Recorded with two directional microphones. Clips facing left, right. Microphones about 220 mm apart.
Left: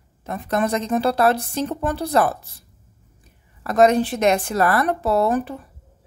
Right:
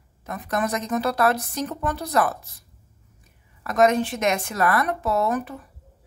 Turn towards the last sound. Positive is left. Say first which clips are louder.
# left 4 dB
turn(degrees=30)  # may be behind; listen again after turning